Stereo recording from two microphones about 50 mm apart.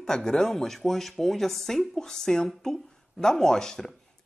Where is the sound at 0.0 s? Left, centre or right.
Centre.